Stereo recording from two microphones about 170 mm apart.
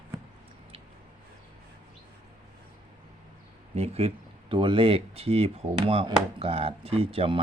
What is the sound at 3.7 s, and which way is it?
Speech, 35° right (ahead or behind).